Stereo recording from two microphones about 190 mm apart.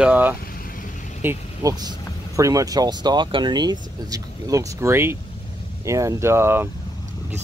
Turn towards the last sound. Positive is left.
turn(degrees=-10)  # may be behind; listen again after turning